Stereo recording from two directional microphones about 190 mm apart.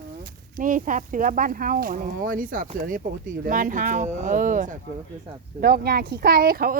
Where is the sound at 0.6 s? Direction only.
45° right (ahead or behind).